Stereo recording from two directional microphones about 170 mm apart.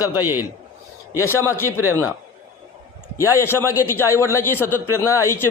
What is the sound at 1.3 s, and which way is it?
Speech, 15° left (ahead or behind).